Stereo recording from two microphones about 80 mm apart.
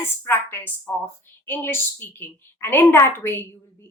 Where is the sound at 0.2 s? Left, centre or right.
Left.